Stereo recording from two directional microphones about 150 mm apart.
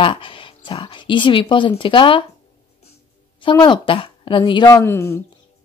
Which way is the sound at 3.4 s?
30° left (ahead or behind).